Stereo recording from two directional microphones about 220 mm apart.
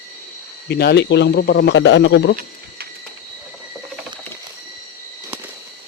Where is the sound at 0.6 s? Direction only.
45° left (ahead or behind).